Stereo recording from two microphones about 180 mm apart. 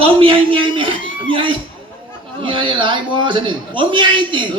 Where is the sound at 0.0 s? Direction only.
30° right (ahead or behind).